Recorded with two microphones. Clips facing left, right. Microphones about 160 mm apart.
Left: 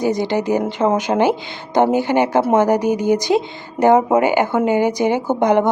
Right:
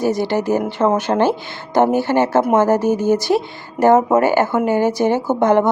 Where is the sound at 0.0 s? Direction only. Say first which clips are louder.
Even; 20° left (ahead or behind).